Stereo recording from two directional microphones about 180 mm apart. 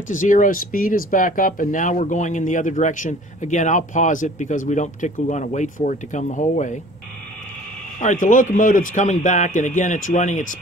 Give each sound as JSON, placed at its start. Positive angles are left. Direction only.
{"t": 0.1, "sound": "speech", "side_deg": 45}
{"t": 8.0, "sound": "speech", "side_deg": 45}